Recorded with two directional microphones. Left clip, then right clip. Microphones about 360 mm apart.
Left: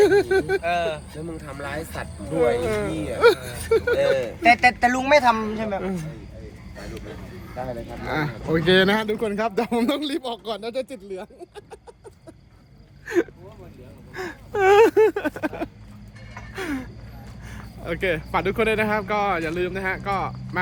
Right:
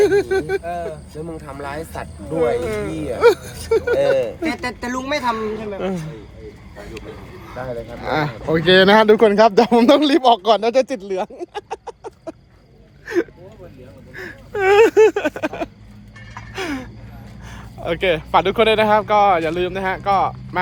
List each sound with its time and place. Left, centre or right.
0.0 s speech: centre
1.3 s speech: centre
3.0 s speech: centre
4.6 s a woman's voice: left
5.8 s speech: centre
8.0 s speech: centre
13.1 s speech: centre
14.1 s speech: centre
16.6 s gasp: centre
17.5 s speech: centre